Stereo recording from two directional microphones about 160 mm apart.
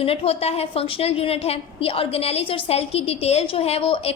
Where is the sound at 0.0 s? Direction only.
40° left (ahead or behind).